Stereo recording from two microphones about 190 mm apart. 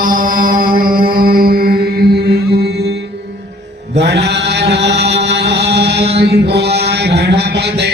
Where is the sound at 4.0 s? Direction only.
60° right (ahead or behind).